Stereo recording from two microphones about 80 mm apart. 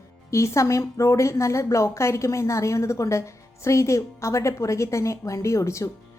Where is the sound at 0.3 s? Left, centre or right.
Left.